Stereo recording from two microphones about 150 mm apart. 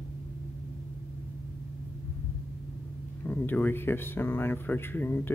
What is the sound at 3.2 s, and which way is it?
Speech, 10° left (ahead or behind).